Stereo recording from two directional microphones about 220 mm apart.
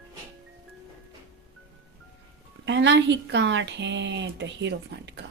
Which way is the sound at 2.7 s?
55° right (ahead or behind).